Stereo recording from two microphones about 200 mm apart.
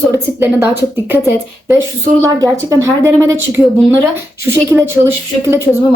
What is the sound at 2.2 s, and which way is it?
Speech, 15° right (ahead or behind).